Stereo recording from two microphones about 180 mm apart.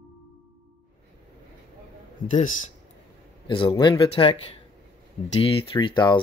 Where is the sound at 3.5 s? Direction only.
30° left (ahead or behind).